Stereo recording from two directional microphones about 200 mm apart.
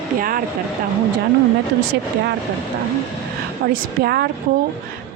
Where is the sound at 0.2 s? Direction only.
45° right (ahead or behind).